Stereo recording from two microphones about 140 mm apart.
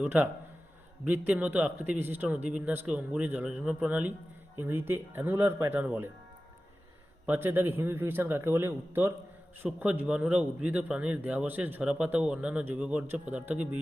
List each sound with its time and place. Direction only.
0.0 s speech: 15° right (ahead or behind)
7.3 s speech: 15° right (ahead or behind)